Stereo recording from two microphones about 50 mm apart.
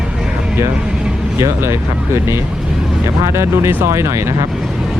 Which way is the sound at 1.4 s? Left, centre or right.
Right.